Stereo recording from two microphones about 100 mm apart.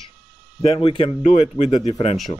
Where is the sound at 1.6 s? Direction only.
90° left.